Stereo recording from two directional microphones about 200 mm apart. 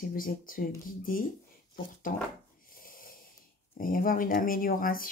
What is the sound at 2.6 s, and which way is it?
Snoring, 45° left (ahead or behind).